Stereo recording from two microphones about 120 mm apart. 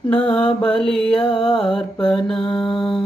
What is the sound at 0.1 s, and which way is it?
Mantra, 10° left (ahead or behind).